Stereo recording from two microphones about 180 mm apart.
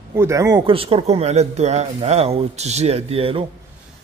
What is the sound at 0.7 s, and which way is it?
Speech, 30° right (ahead or behind).